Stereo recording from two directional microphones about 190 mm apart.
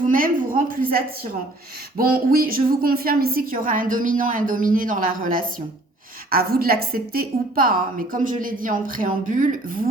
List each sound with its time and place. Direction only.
0.1 s a woman's voice: 45° right (ahead or behind)